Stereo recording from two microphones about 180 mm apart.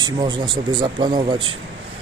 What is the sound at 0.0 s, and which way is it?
Speech, 25° right (ahead or behind).